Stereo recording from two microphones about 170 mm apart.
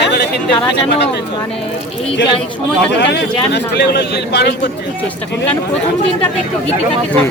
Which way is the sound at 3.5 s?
75° left (ahead or behind).